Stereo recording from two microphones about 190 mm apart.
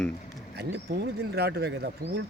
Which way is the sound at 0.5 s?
55° right (ahead or behind).